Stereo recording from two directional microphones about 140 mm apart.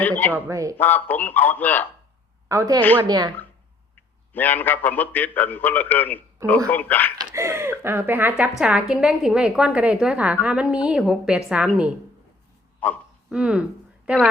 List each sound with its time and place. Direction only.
0.0 s a man's voice: 10° left (ahead or behind)
0.3 s speech: 20° right (ahead or behind)
0.8 s a man's voice: 15° left (ahead or behind)
2.5 s speech: 25° right (ahead or behind)
4.3 s a man's voice: 15° left (ahead or behind)
7.3 s a woman's voice: 20° right (ahead or behind)
12.8 s a man's voice: 10° left (ahead or behind)
13.3 s speech: 10° right (ahead or behind)